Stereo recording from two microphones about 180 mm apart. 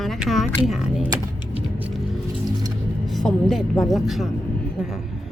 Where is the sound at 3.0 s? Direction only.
Centre (ahead or behind).